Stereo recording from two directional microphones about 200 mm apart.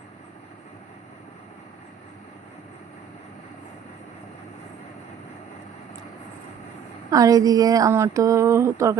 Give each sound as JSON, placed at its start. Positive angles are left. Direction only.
{"t": 7.1, "sound": "speech", "side_deg": -15}